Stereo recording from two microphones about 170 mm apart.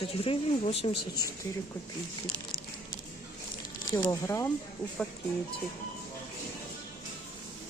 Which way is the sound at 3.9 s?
20° left (ahead or behind).